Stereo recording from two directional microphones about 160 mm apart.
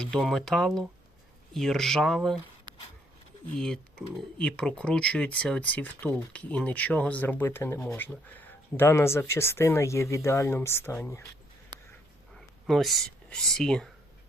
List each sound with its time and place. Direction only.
0.0 s speech: centre (ahead or behind)
3.6 s speech: 5° left (ahead or behind)
11.7 s a sound: 25° right (ahead or behind)
12.3 s speech: centre (ahead or behind)